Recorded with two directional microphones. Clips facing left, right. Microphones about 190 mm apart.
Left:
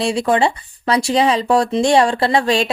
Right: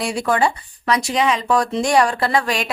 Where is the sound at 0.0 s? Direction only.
25° left (ahead or behind).